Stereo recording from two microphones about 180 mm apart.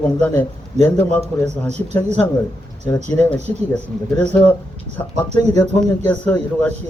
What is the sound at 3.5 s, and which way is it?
Speech, 15° left (ahead or behind).